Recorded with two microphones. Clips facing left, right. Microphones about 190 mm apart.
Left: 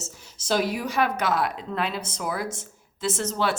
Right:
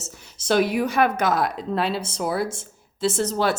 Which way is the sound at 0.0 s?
60° right (ahead or behind).